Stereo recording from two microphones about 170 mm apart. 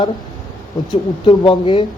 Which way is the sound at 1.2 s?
30° left (ahead or behind).